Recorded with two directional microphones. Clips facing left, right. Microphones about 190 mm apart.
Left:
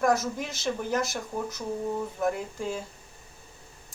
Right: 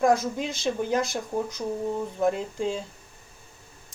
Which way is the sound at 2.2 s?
25° right (ahead or behind).